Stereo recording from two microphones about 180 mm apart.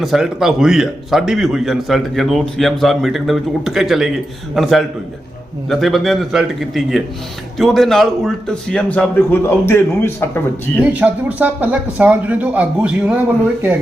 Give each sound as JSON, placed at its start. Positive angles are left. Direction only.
{"t": 0.0, "sound": "a man's voice", "side_deg": 0}
{"t": 10.8, "sound": "speech", "side_deg": -10}